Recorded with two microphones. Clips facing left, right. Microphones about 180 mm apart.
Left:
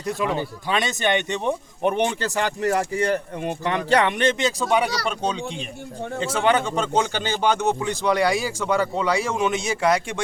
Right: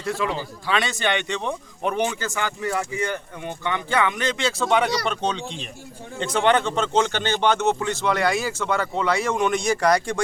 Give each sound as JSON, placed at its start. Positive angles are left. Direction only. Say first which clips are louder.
{"t": 0.0, "sound": "a man's voice", "louder": "left 1 dB", "side_deg": 20}
{"t": 2.2, "sound": "a man's voice", "louder": "left 4 dB", "side_deg": 35}
{"t": 4.6, "sound": "speech", "louder": "right 2 dB", "side_deg": 10}